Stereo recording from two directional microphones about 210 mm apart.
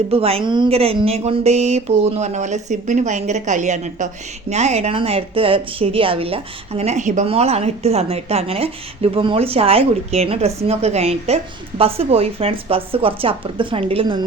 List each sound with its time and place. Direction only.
0.1 s speech: 30° right (ahead or behind)